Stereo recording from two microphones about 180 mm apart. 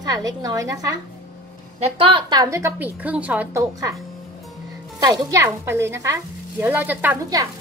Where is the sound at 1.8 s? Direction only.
30° right (ahead or behind); by 3.6 s 10° right (ahead or behind).